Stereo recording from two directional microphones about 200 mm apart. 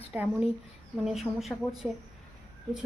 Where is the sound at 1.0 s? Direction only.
Centre (ahead or behind).